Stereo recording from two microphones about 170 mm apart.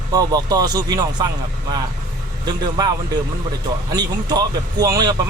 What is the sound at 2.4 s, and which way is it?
Speech, 25° right (ahead or behind).